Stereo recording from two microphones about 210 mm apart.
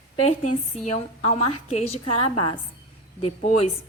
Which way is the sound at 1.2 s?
30° left (ahead or behind).